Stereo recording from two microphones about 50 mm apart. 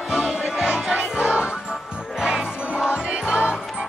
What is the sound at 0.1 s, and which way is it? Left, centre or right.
Music, centre.